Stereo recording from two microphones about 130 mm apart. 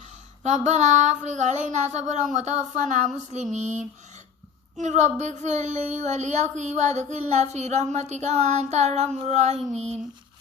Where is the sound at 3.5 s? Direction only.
60° right (ahead or behind).